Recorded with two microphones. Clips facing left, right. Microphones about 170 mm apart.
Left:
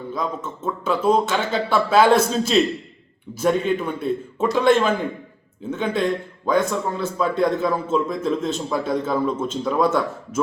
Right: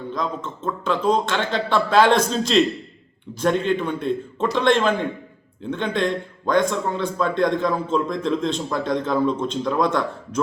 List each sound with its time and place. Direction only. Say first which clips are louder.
0.1 s speech: left 1 dB; 5° left (ahead or behind)